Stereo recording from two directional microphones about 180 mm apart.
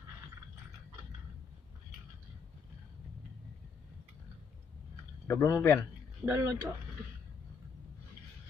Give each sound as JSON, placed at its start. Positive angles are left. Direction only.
{"t": 5.3, "sound": "a man's voice", "side_deg": 15}
{"t": 6.2, "sound": "speech", "side_deg": -15}